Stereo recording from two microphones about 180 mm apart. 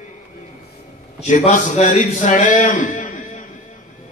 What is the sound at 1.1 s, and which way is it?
A man's voice, 40° left (ahead or behind).